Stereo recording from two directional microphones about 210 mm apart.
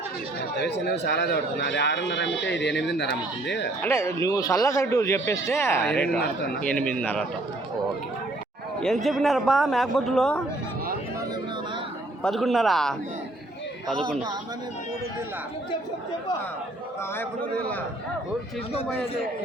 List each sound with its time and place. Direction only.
0.5 s a man's voice: 50° left (ahead or behind)
3.8 s a man's voice: 15° left (ahead or behind)
8.8 s a man's voice: centre (ahead or behind)
12.2 s a man's voice: centre (ahead or behind)
18.7 s a man's voice: 30° left (ahead or behind)